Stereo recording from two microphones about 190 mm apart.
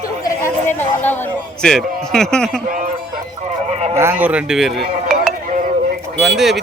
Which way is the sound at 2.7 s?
45° right (ahead or behind).